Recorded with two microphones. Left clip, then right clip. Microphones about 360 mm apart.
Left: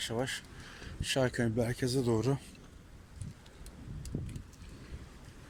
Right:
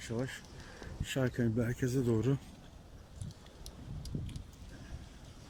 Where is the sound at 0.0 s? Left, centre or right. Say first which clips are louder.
Left 5 dB; centre.